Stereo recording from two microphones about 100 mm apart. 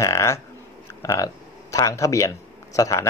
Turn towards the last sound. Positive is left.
turn(degrees=30)  # may be behind; listen again after turning